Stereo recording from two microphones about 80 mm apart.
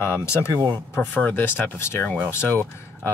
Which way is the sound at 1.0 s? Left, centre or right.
Centre.